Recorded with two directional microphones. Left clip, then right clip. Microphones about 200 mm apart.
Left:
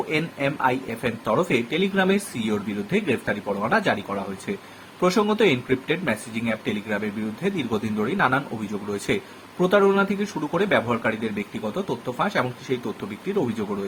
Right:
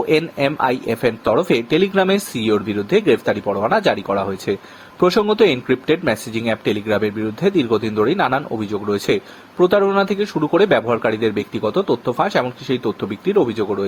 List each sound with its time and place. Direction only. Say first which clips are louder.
0.1 s speech: right 8 dB; 45° right (ahead or behind)